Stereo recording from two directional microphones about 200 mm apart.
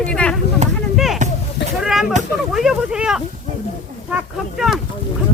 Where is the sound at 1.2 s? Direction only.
35° right (ahead or behind).